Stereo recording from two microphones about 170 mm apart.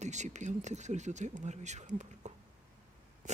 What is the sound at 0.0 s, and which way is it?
Speech, 45° right (ahead or behind).